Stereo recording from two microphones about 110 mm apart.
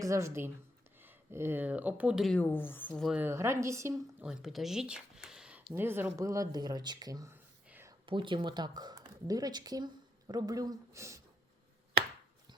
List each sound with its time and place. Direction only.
0.0 s speech: 30° right (ahead or behind); by 2.2 s 10° right (ahead or behind)
2.2 s speech: 10° left (ahead or behind)
3.1 s speech: 20° right (ahead or behind)
4.2 s speech: 5° right (ahead or behind)
5.7 s speech: 20° right (ahead or behind)
8.0 s speech: 50° right (ahead or behind); by 11.2 s 25° right (ahead or behind)